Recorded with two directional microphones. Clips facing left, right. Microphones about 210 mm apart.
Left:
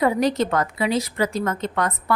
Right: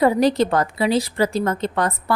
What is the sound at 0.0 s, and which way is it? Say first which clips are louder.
A woman's voice: right 3 dB; 35° right (ahead or behind).